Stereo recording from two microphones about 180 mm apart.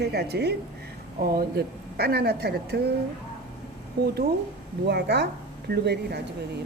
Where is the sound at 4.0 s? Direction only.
70° right (ahead or behind).